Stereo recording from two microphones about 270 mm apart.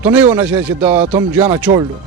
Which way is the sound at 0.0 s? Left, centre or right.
Centre.